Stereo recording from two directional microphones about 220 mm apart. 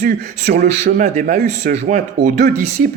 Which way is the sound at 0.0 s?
45° right (ahead or behind).